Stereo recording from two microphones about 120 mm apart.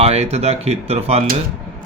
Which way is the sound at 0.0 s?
60° right (ahead or behind).